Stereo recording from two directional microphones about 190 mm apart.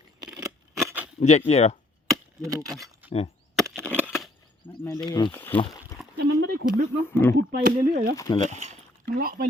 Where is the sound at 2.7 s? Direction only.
Centre (ahead or behind).